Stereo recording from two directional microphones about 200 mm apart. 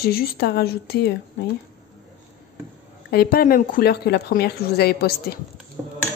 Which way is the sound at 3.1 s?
50° left (ahead or behind).